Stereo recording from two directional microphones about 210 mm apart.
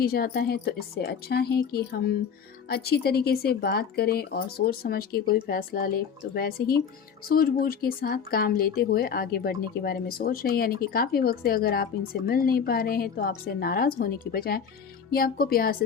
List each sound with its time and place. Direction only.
0.0 s speech: 45° left (ahead or behind)